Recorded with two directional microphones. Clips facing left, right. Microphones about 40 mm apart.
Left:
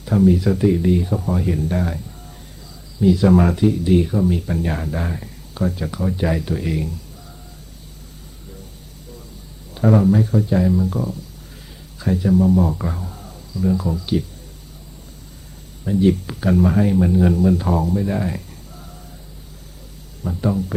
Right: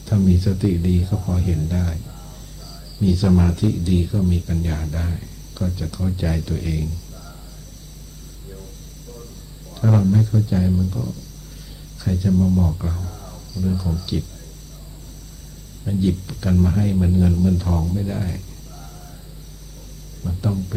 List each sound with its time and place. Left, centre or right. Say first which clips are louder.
0.0 s speech: left 4 dB; left
2.6 s cricket: left 5 dB; left
3.5 s speech: left 5 dB; left
9.7 s speech: left 4 dB; left
10.6 s speech: left 3 dB; left
10.8 s speech: left 4 dB; left
15.8 s speech: left 5 dB; left
20.2 s speech: left 4 dB; left